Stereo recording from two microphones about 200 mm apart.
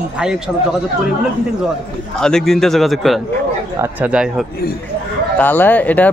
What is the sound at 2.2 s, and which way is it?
A man's voice, 5° left (ahead or behind).